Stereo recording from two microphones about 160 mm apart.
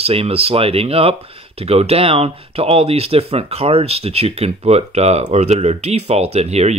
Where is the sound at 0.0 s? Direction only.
40° right (ahead or behind).